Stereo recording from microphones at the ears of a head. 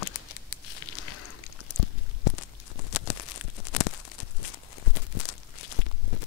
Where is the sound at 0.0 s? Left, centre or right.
Left.